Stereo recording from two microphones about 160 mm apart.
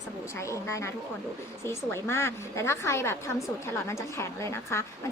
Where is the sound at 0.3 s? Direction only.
20° left (ahead or behind).